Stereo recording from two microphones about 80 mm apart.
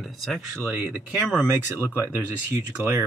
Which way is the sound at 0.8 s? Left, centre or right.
Centre.